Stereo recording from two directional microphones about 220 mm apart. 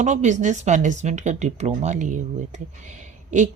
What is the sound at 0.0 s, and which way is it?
Speech, 35° right (ahead or behind).